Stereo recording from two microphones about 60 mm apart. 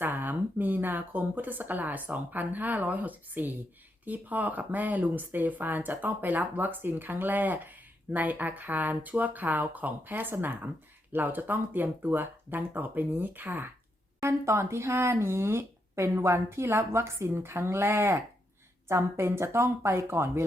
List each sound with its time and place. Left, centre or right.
0.0 s a woman's voice: right
14.2 s speech: right